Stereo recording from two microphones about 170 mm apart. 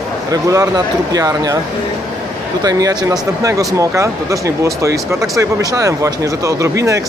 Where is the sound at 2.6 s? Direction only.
20° right (ahead or behind).